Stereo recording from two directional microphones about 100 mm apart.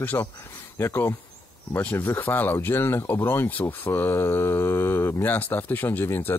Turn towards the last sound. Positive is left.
turn(degrees=25)  # may be behind; listen again after turning